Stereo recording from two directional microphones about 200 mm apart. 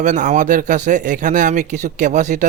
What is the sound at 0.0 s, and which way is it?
Speech, 40° right (ahead or behind).